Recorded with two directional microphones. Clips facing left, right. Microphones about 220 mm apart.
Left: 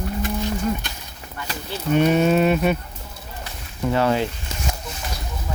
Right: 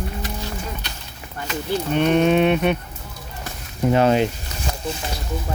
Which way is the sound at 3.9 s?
20° right (ahead or behind).